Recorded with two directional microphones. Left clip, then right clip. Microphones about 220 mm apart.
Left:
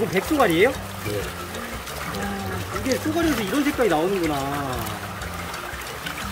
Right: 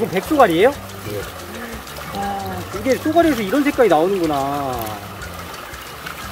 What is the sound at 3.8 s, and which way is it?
Speech, 20° right (ahead or behind).